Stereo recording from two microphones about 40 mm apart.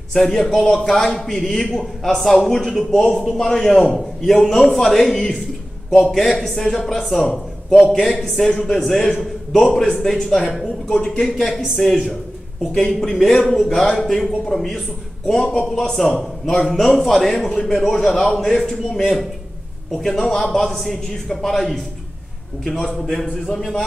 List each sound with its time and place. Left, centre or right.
0.1 s a man's voice: centre
11.7 s a man's voice: centre
18.9 s speech: centre
20.2 s a man's voice: centre
22.9 s a man's voice: centre